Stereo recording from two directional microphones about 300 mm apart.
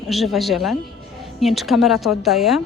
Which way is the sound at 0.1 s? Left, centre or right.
Centre.